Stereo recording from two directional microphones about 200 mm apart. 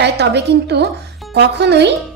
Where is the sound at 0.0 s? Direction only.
55° right (ahead or behind).